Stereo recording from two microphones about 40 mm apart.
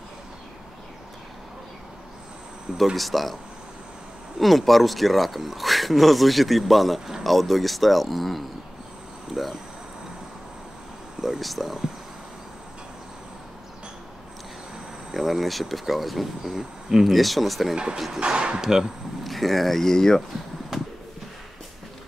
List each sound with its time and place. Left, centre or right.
3.0 s speech: centre
4.4 s speech: centre
11.1 s speech: centre
15.0 s speech: centre
18.2 s speech: right
19.2 s speech: centre
20.7 s a sound: centre